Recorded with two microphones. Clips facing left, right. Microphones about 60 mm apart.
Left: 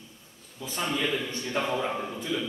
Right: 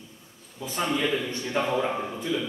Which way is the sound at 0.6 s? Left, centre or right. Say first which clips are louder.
Right 3 dB; centre.